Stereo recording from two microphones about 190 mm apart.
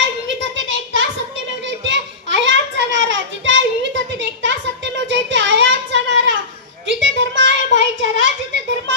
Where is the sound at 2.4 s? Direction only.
70° right (ahead or behind).